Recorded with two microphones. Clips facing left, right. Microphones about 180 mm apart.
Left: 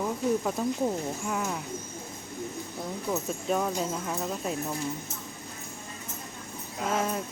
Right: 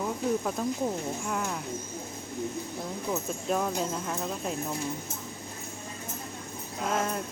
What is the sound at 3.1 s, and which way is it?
Speech, centre (ahead or behind).